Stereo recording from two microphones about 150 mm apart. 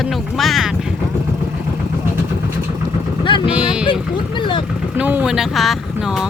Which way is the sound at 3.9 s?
35° left (ahead or behind).